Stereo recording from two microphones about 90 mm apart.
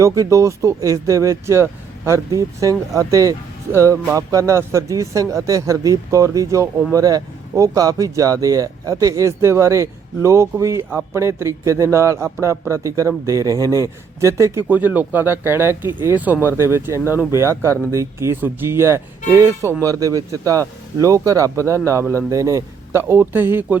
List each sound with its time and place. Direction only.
0.0 s speech: 35° right (ahead or behind)
14.7 s speech: 20° right (ahead or behind)